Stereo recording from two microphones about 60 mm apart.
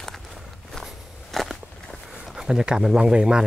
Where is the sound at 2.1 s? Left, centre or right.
Centre.